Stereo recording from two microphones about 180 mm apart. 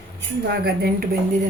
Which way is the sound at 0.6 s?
55° right (ahead or behind).